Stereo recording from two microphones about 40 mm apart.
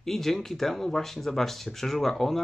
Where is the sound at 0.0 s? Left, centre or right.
Centre.